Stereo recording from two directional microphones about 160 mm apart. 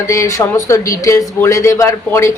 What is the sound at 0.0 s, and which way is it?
Speech, 20° left (ahead or behind).